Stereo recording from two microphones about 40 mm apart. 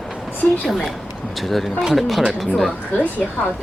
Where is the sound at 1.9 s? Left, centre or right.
Centre.